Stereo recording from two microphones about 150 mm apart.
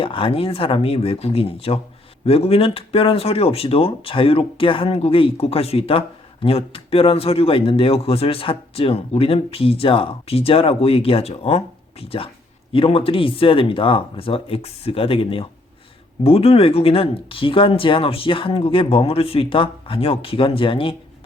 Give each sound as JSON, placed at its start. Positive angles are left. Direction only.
{"t": 0.0, "sound": "speech", "side_deg": 35}